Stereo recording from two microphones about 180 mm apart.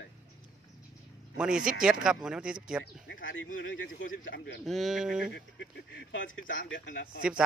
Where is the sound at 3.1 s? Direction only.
90° left.